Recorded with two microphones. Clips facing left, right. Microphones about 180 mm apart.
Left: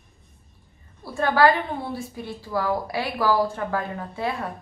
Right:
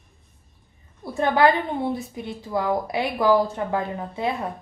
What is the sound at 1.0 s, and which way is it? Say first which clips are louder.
A woman's voice: even; 20° right (ahead or behind).